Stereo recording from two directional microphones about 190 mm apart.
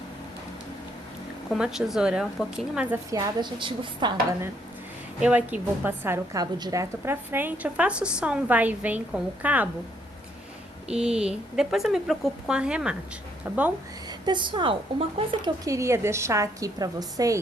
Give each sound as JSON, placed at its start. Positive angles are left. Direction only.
{"t": 1.5, "sound": "speech", "side_deg": -5}
{"t": 3.1, "sound": "a woman's voice", "side_deg": -20}
{"t": 5.2, "sound": "a woman's voice", "side_deg": -5}
{"t": 10.8, "sound": "speech", "side_deg": -5}
{"t": 14.1, "sound": "a woman's voice", "side_deg": -25}